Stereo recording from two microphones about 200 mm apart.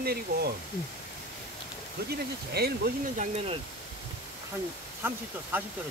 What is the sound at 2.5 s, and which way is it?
Speech, 50° right (ahead or behind).